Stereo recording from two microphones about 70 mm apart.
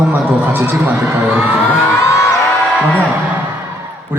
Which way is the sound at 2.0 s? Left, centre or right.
Left.